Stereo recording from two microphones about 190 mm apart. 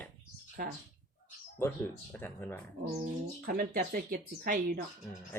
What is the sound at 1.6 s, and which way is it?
Speech, 15° left (ahead or behind).